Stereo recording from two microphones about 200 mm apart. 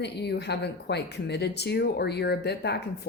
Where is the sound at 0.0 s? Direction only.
55° left (ahead or behind).